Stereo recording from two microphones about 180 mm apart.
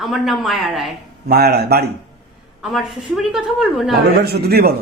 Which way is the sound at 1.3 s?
60° right (ahead or behind).